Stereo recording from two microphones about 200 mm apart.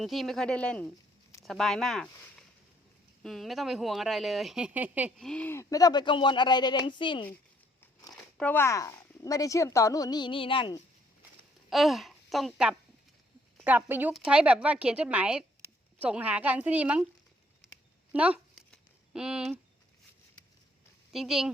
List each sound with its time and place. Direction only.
0.0 s speech: centre (ahead or behind)
3.2 s speech: centre (ahead or behind)
5.3 s speech: 10° left (ahead or behind)
7.8 s speech: 5° left (ahead or behind); by 10.8 s 25° left (ahead or behind)
11.7 s a woman's voice: centre (ahead or behind)
18.1 s a sound: 5° right (ahead or behind)
21.1 s speech: centre (ahead or behind)